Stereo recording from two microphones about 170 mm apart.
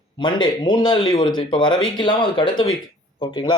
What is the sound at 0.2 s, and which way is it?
Speech, 25° left (ahead or behind).